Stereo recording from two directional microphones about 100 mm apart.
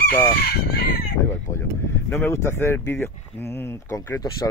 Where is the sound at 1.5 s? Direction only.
30° left (ahead or behind).